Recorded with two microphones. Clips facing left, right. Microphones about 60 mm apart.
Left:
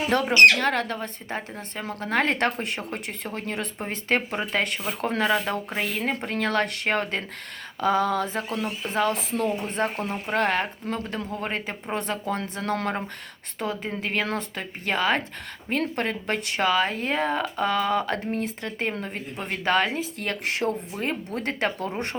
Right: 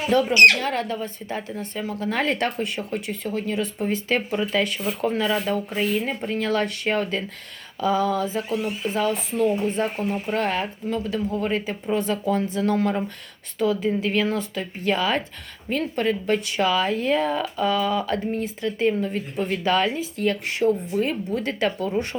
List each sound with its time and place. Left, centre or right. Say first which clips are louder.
0.1 s speech: right 1 dB; left
1.3 s speech: right 3 dB; left
21.0 s speech: right 4 dB; left